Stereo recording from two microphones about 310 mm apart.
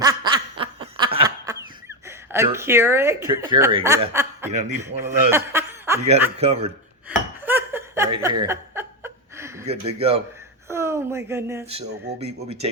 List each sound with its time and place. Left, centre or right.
0.0 s snicker: centre
0.9 s a sound: centre
2.0 s speech: centre
4.5 s a man's voice: right
4.8 s a man's voice: centre
5.3 s snicker: centre
6.4 s a man's voice: centre
7.1 s a sound: centre
9.6 s a man's voice: centre
11.6 s a man's voice: centre